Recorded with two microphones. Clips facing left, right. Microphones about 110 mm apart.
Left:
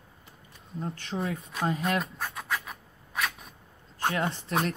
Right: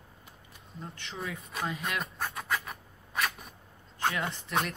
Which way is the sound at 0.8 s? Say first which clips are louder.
Left 7 dB; 35° left (ahead or behind).